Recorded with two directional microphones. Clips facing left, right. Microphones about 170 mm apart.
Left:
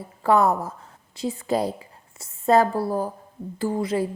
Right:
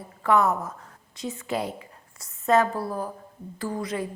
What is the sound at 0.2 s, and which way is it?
A woman's voice, 35° left (ahead or behind).